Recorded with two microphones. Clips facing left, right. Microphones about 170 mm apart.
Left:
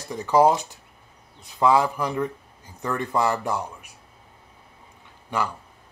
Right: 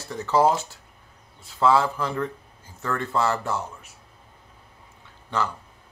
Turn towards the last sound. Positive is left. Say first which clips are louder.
# even
turn(degrees=10)  # may be behind; listen again after turning